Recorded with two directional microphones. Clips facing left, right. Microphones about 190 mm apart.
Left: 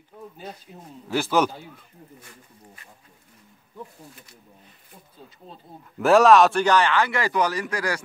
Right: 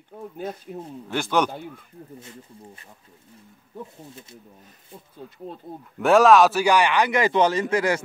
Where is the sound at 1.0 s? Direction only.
5° left (ahead or behind).